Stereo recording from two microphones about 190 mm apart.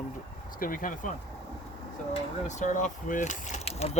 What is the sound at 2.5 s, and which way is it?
Speech, 40° left (ahead or behind).